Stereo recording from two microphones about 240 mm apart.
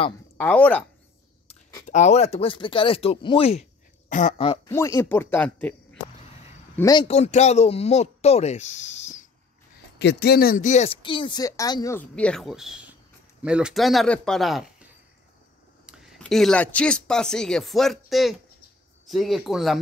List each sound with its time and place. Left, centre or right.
0.4 s speech: centre
1.9 s speech: left
4.5 s speech: centre
6.8 s speech: centre
9.9 s speech: left; by 19.8 s centre